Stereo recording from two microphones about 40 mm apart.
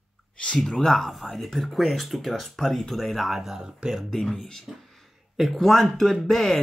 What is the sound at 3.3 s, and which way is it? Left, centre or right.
Speech, centre.